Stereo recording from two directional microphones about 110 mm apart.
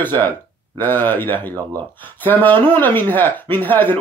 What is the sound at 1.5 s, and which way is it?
Speech, 30° right (ahead or behind).